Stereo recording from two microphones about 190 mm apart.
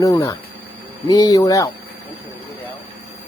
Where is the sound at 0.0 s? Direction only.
20° left (ahead or behind).